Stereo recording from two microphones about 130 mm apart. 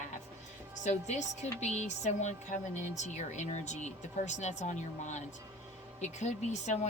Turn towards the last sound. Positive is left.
turn(degrees=60)  # may be behind; listen again after turning